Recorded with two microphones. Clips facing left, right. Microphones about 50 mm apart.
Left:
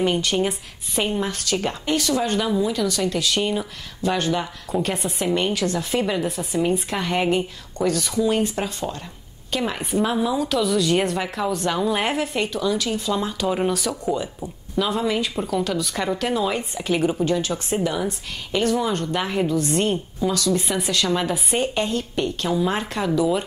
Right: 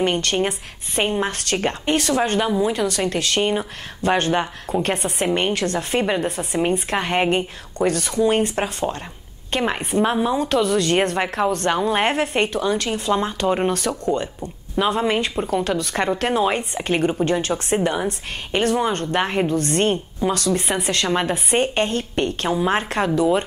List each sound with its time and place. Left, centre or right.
0.0 s a woman's voice: right
4.8 s a woman's voice: right
5.2 s a woman's voice: right
11.7 s a woman's voice: right
12.0 s a woman's voice: right
14.8 s a woman's voice: right
15.8 s a woman's voice: right
19.5 s a woman's voice: right
20.2 s a woman's voice: right